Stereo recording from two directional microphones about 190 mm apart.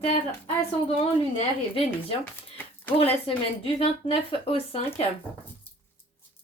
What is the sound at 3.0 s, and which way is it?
Speech, 30° left (ahead or behind).